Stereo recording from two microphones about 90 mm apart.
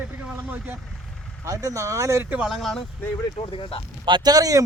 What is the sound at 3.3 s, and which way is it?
Speech, 85° left.